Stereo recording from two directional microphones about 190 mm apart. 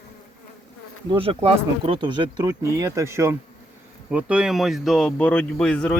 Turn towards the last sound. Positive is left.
turn(degrees=5)  # may be behind; listen again after turning